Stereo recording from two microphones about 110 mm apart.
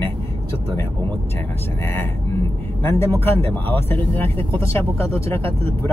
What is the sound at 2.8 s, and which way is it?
Speech, 20° left (ahead or behind).